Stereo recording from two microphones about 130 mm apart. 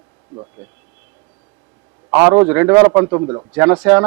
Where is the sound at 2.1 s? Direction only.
15° right (ahead or behind).